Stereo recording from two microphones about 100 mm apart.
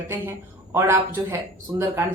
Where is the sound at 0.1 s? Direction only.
25° right (ahead or behind).